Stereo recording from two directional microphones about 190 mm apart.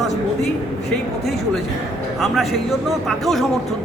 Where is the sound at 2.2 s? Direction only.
Centre (ahead or behind).